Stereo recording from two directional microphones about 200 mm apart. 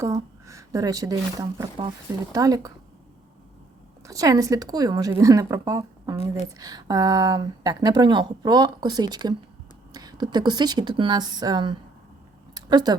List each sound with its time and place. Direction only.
0.0 s speech: 15° right (ahead or behind)
4.0 s speech: 15° right (ahead or behind)
12.5 s a sound: 20° right (ahead or behind)